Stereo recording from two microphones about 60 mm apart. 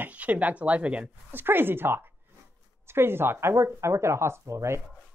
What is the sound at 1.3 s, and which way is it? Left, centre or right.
Speech, right.